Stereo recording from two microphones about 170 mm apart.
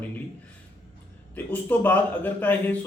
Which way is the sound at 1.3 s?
10° left (ahead or behind).